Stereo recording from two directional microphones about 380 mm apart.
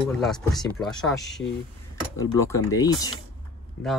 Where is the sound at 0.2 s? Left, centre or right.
Centre.